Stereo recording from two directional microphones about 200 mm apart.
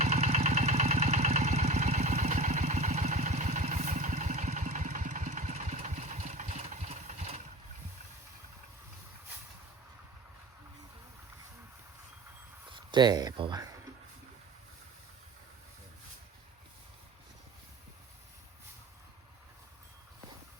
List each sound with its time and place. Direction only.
0.0 s engine: 35° right (ahead or behind)
12.7 s speech: 20° right (ahead or behind)